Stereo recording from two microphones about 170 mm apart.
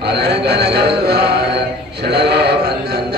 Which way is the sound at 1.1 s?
70° right (ahead or behind).